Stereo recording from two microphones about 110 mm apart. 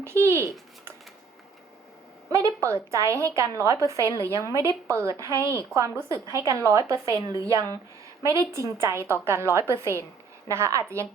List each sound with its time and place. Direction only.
0.0 s a woman's voice: 25° right (ahead or behind)
2.3 s a woman's voice: 30° right (ahead or behind)